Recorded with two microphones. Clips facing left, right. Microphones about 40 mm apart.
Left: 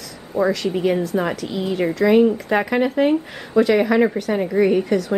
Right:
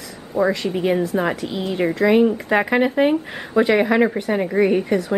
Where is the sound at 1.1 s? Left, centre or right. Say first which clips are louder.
Even; centre.